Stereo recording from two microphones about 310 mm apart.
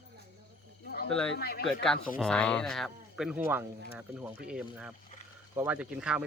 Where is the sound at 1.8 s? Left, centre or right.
Centre.